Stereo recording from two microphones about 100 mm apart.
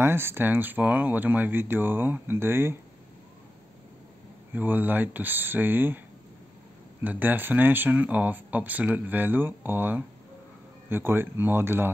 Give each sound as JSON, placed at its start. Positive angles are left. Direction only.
{"t": 0.0, "sound": "speech", "side_deg": -25}
{"t": 4.5, "sound": "speech", "side_deg": -20}
{"t": 7.0, "sound": "speech", "side_deg": -20}